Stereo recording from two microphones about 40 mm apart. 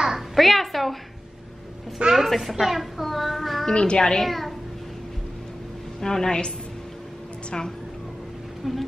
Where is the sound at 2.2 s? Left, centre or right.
Centre.